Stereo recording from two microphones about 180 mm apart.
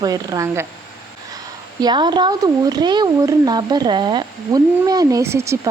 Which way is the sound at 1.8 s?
25° right (ahead or behind).